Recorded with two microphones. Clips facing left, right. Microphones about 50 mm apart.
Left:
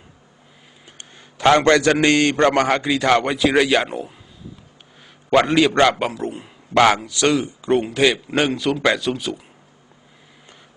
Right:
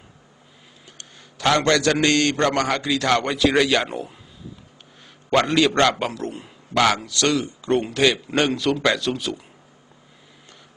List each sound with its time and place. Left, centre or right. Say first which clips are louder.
0.9 s a man's voice: left 3 dB; left
3.8 s a man's voice: left 2 dB; centre
5.3 s a man's voice: left 3 dB; centre